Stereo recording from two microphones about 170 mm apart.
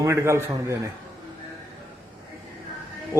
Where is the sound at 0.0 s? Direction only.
15° right (ahead or behind).